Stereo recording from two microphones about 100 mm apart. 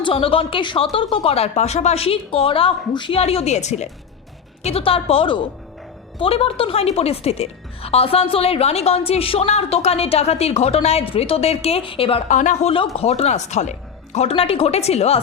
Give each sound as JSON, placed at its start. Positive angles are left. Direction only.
{"t": 0.0, "sound": "a woman's voice", "side_deg": 65}
{"t": 3.2, "sound": "a woman's voice", "side_deg": 85}
{"t": 4.6, "sound": "a woman's voice", "side_deg": 75}
{"t": 13.0, "sound": "speech", "side_deg": 90}